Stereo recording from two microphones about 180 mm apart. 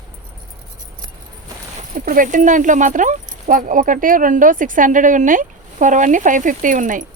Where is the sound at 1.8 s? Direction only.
50° right (ahead or behind).